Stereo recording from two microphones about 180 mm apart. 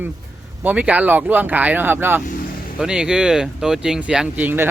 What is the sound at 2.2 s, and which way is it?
Vehicle, 50° left (ahead or behind).